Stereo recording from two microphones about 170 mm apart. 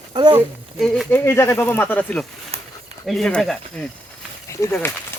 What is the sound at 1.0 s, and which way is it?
Speech, 15° left (ahead or behind).